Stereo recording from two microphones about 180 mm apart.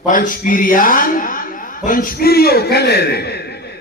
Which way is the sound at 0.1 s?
50° left (ahead or behind).